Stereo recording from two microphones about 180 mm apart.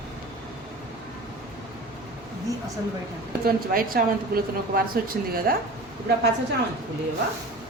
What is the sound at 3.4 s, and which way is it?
A woman's voice, 50° right (ahead or behind).